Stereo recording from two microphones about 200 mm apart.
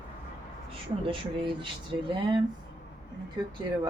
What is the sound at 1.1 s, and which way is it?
Speech, 25° right (ahead or behind).